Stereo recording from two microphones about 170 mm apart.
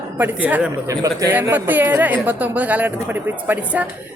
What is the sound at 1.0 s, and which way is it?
A woman's voice, 20° right (ahead or behind).